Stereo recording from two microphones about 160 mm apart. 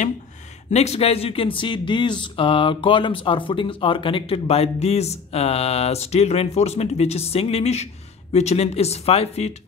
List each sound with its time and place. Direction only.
0.7 s speech: 40° left (ahead or behind)